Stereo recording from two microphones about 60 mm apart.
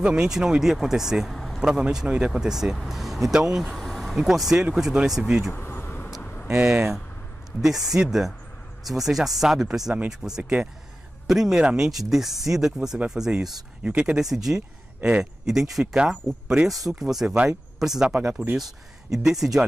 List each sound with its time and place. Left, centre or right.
0.0 s speech: centre
1.6 s speech: centre
3.7 s vehicle: centre
4.2 s speech: centre
5.5 s bee: left
6.5 s speech: right
7.6 s speech: centre
14.2 s speech: centre
15.0 s a man's voice: right
15.7 s speech: centre